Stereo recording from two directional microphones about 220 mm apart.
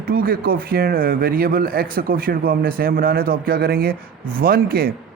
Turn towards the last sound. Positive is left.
turn(degrees=-45)  # may be behind; listen again after turning